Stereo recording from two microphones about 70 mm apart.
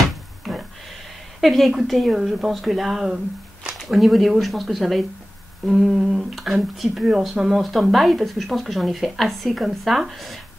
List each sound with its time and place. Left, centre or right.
1.4 s a woman's voice: centre